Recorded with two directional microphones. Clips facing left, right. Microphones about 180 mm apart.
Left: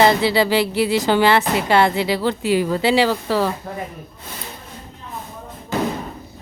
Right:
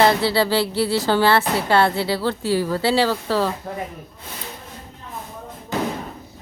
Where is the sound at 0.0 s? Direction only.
15° left (ahead or behind).